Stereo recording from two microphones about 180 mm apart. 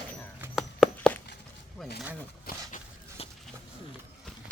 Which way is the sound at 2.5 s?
55° left (ahead or behind).